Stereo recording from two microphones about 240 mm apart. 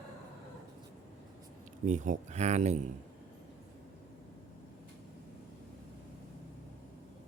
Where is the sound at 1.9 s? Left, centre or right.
Right.